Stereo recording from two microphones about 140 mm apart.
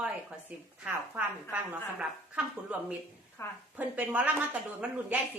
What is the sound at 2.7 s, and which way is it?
Speech, 10° right (ahead or behind).